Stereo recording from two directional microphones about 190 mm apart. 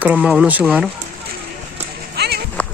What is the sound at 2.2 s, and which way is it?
Music, 60° right (ahead or behind).